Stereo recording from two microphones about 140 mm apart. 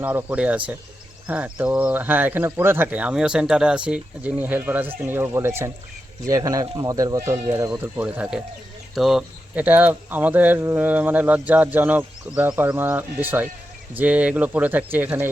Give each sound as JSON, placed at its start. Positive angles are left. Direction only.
{"t": 0.0, "sound": "speech", "side_deg": -15}
{"t": 9.6, "sound": "speech", "side_deg": -10}